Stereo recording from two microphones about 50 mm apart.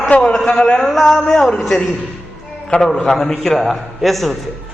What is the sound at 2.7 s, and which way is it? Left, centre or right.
Speech, left.